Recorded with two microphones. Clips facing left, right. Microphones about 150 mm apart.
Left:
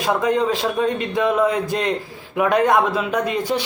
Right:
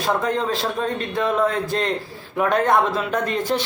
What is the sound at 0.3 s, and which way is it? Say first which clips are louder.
Speech: left 4 dB; 15° left (ahead or behind).